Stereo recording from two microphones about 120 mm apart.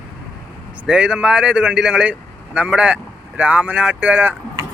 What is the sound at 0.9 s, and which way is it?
Speech, 10° right (ahead or behind).